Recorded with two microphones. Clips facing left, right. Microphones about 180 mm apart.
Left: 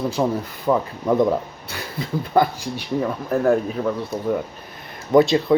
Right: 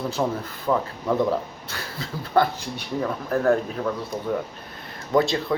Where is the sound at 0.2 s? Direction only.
15° left (ahead or behind).